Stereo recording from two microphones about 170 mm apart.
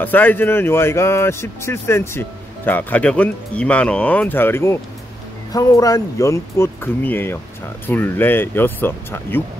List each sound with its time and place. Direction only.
0.0 s speech: 10° left (ahead or behind)